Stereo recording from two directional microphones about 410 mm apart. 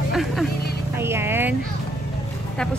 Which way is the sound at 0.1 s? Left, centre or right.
Centre.